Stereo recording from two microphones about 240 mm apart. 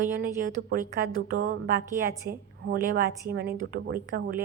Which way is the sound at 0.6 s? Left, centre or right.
Right.